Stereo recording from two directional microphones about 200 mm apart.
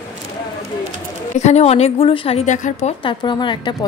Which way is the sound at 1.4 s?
35° left (ahead or behind).